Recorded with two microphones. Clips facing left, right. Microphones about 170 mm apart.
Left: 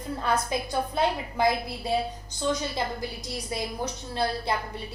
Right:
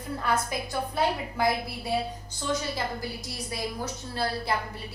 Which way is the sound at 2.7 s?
20° left (ahead or behind).